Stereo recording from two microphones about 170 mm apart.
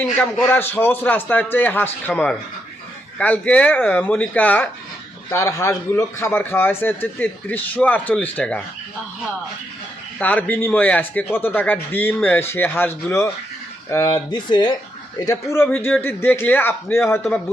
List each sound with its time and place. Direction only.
0.0 s a man's voice: 5° left (ahead or behind)
10.2 s a man's voice: 10° left (ahead or behind)